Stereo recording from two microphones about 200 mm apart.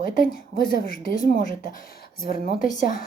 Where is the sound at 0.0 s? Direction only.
45° left (ahead or behind).